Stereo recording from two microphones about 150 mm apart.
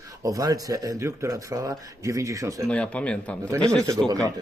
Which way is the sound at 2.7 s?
10° left (ahead or behind).